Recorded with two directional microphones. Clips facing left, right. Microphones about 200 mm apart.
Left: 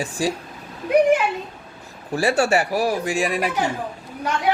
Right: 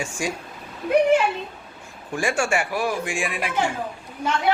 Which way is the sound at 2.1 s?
35° left (ahead or behind).